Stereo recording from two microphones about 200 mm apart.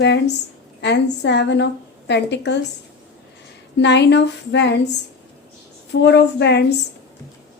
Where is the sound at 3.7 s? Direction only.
60° left (ahead or behind).